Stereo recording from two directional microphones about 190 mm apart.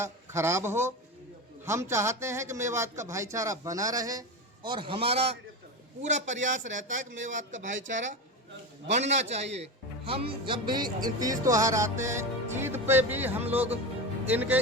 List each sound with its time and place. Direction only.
0.0 s a man's voice: 15° right (ahead or behind)